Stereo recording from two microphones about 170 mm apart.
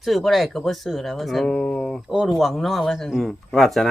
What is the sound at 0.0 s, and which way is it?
Speech, centre (ahead or behind).